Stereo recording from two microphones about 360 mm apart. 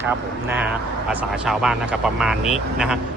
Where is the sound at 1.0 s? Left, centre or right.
Centre.